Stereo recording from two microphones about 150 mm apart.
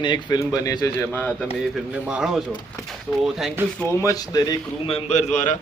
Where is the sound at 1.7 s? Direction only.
5° right (ahead or behind).